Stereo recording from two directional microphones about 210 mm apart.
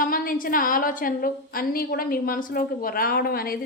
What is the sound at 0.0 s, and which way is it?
A woman's voice, 40° left (ahead or behind).